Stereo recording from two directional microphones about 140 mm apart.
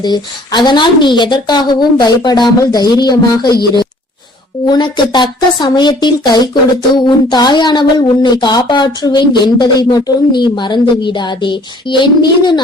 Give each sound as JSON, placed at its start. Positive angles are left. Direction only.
{"t": 0.0, "sound": "speech", "side_deg": 30}
{"t": 4.6, "sound": "speech", "side_deg": 30}